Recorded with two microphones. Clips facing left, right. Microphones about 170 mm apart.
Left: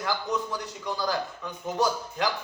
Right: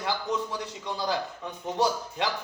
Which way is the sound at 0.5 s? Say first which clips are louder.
Left 1 dB; 25° right (ahead or behind).